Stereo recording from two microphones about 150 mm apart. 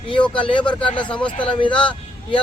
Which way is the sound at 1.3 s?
35° left (ahead or behind).